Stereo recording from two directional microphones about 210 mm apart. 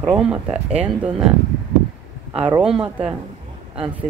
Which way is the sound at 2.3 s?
25° right (ahead or behind).